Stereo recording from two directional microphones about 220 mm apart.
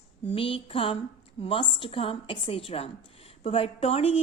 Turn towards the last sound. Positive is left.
turn(degrees=25)  # may be behind; listen again after turning